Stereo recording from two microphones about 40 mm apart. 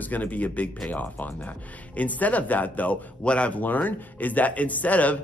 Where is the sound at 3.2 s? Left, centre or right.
Left.